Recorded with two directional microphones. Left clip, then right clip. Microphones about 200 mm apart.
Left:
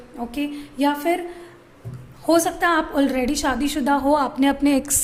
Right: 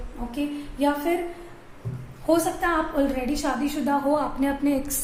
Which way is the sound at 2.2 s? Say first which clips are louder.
Left 4 dB; 50° left (ahead or behind).